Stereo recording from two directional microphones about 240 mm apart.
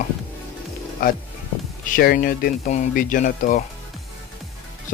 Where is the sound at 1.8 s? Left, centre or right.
Left.